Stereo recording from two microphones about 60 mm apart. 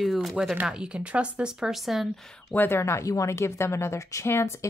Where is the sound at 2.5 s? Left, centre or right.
Left.